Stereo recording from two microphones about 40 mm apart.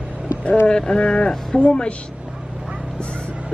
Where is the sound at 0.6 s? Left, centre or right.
Left.